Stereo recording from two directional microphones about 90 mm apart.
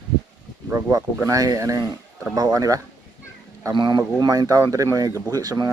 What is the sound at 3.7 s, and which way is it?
Speech, 65° right (ahead or behind).